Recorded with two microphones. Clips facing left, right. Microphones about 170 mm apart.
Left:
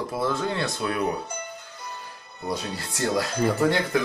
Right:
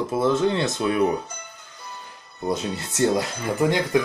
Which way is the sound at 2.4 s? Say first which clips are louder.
Right 4 dB; 20° right (ahead or behind).